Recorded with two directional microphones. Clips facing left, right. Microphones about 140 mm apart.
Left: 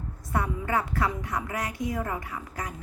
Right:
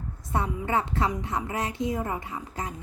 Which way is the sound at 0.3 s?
25° right (ahead or behind).